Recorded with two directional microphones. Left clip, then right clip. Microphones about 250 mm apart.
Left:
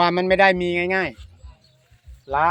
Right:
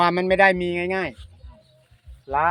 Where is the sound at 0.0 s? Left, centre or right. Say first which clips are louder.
Left 1 dB; centre.